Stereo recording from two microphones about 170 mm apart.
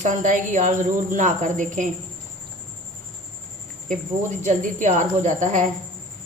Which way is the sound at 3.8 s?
45° right (ahead or behind).